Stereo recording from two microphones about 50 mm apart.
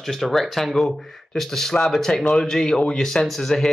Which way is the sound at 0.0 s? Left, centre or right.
Centre.